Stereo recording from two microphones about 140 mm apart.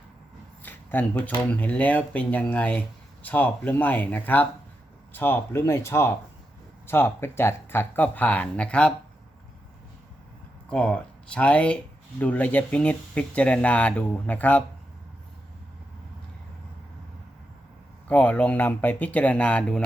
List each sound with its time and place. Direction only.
0.6 s speech: 15° left (ahead or behind)
10.7 s speech: 10° left (ahead or behind)
18.1 s speech: 10° left (ahead or behind)